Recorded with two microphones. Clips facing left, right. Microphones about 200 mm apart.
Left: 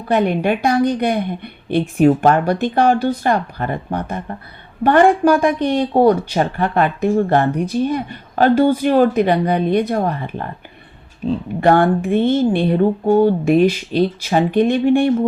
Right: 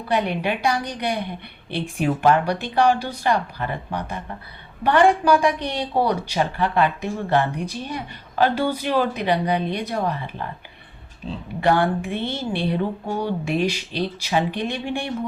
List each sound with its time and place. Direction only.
0.1 s speech: 50° left (ahead or behind)
11.6 s speech: 50° left (ahead or behind)